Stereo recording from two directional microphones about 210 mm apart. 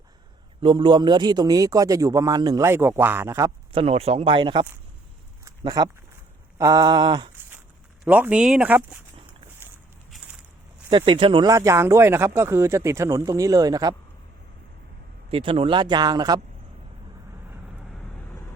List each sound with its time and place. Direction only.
0.6 s speech: 25° right (ahead or behind)
3.7 s speech: 25° right (ahead or behind)
5.5 s a sound: 20° right (ahead or behind)
6.6 s speech: 15° right (ahead or behind)
8.0 s speech: 5° right (ahead or behind)
10.8 s speech: 25° right (ahead or behind)
15.3 s speech: 25° right (ahead or behind)